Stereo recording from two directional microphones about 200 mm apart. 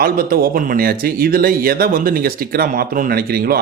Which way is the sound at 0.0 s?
50° right (ahead or behind).